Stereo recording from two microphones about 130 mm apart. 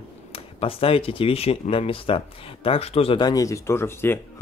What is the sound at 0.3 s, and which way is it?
Speech, 45° left (ahead or behind).